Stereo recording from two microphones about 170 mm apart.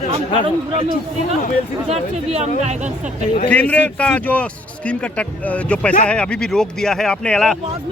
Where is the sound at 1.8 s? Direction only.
40° right (ahead or behind).